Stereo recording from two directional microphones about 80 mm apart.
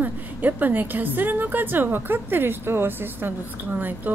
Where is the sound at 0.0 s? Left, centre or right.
Right.